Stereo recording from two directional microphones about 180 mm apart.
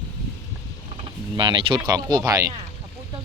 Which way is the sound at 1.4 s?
25° right (ahead or behind).